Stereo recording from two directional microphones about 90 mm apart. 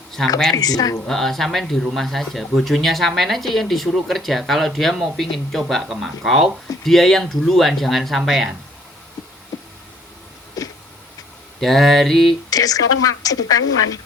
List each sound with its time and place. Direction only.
0.5 s a woman's voice: 45° left (ahead or behind)
1.0 s speech: 5° left (ahead or behind)
10.6 s a sound: 40° left (ahead or behind)
11.6 s speech: centre (ahead or behind)
12.5 s a woman's voice: 45° left (ahead or behind)